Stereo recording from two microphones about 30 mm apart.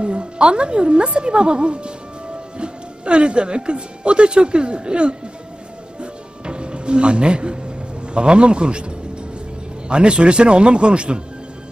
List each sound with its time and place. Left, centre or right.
0.0 s a woman's voice: right
5.9 s music: right
9.8 s a woman's voice: right